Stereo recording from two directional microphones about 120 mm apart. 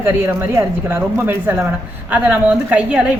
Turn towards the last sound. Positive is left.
turn(degrees=-5)  # may be behind; listen again after turning